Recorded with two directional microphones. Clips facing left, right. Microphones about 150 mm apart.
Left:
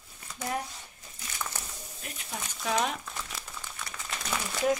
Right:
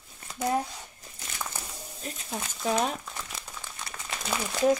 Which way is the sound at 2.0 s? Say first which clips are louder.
Right 4 dB; 30° right (ahead or behind).